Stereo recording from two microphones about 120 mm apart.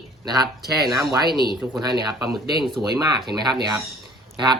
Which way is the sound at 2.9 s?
35° right (ahead or behind).